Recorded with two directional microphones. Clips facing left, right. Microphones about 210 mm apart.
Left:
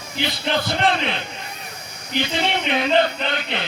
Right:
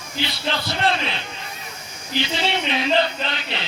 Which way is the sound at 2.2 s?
50° left (ahead or behind).